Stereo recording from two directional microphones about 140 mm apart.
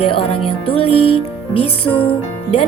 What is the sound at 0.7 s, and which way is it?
Music, 45° left (ahead or behind).